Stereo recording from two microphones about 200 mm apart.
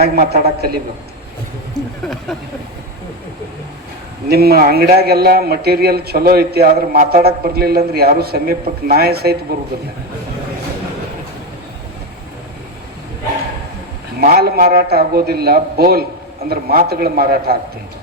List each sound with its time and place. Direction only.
0.0 s a man's voice: 50° right (ahead or behind)
4.3 s a man's voice: 50° right (ahead or behind)
14.2 s a man's voice: 50° right (ahead or behind)